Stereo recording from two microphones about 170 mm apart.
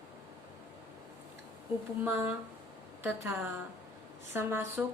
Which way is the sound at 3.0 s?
10° right (ahead or behind).